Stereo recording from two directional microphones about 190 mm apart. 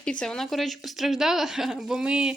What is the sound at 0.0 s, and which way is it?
Speech, 5° left (ahead or behind).